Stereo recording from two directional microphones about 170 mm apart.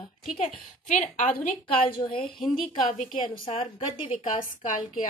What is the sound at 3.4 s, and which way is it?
A woman's voice, 35° left (ahead or behind).